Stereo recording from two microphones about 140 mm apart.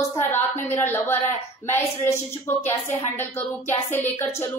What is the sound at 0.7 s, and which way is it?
A woman's voice, 15° left (ahead or behind).